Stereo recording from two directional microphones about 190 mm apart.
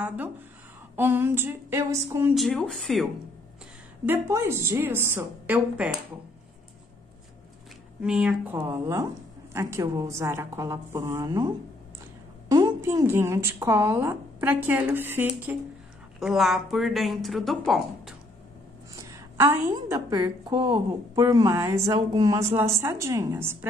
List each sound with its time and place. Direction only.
0.0 s a woman's voice: 10° right (ahead or behind)
2.3 s a woman's voice: centre (ahead or behind)
4.0 s a woman's voice: 10° right (ahead or behind)
8.0 s a woman's voice: 5° right (ahead or behind)
18.9 s a woman's voice: 15° right (ahead or behind)